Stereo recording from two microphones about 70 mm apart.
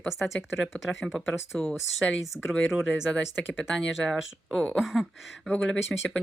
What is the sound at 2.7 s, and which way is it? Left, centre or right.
Speech, centre.